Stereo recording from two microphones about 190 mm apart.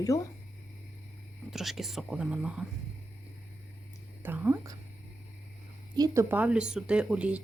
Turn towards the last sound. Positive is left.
turn(degrees=-5)  # may be behind; listen again after turning